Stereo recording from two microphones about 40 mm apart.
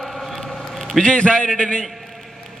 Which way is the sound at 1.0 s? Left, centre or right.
Left.